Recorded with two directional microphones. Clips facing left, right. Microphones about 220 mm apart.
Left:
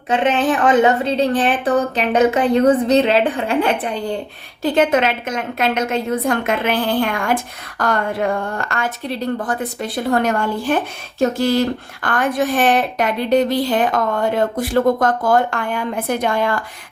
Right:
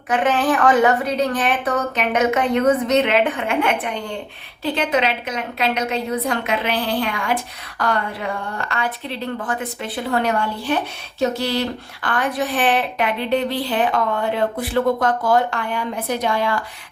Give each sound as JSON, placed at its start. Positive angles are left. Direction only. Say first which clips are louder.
{"t": 0.1, "sound": "a woman's voice", "louder": "left 2 dB", "side_deg": 25}
{"t": 4.6, "sound": "a woman's voice", "louder": "left 5 dB", "side_deg": 50}